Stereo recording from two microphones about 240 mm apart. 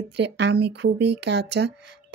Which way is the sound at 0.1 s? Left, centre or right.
Right.